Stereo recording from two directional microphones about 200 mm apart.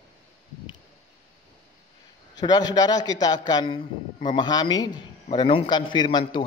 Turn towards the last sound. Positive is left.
turn(degrees=20)  # may be behind; listen again after turning